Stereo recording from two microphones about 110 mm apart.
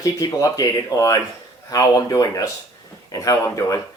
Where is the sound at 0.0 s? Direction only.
30° left (ahead or behind).